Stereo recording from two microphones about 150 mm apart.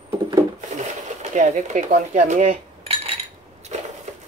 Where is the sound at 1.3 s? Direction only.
55° right (ahead or behind).